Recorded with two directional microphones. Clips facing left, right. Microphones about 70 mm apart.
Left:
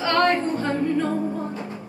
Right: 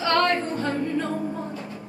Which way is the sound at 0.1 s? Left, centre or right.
Left.